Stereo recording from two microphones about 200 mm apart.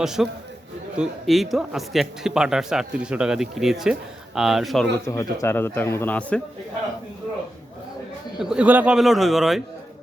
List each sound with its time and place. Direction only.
0.0 s a man's voice: centre (ahead or behind)
5.0 s a man's voice: 15° left (ahead or behind)
8.4 s a man's voice: 5° right (ahead or behind)